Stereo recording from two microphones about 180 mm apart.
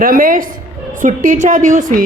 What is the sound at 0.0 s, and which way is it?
A woman's voice, 50° right (ahead or behind).